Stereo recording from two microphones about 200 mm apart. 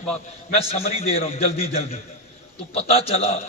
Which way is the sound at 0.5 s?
30° left (ahead or behind).